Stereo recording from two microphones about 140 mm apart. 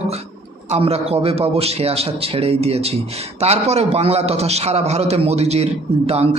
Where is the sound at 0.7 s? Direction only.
45° right (ahead or behind).